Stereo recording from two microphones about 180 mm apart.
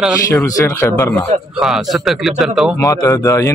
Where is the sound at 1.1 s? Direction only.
Centre (ahead or behind).